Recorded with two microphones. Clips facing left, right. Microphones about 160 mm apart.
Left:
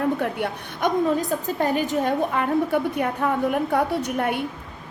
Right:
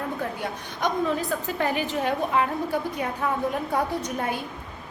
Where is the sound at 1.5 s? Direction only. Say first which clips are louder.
Left 4 dB; 40° left (ahead or behind); by 4.4 s 65° left (ahead or behind).